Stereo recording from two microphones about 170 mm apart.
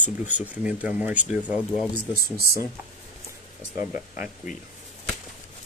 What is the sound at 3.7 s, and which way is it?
Speech, 10° right (ahead or behind).